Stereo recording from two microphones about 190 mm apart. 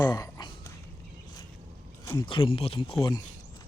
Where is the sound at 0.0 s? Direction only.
20° left (ahead or behind).